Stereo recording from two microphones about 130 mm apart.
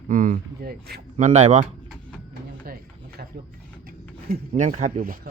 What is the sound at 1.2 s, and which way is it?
Speech, 65° right (ahead or behind).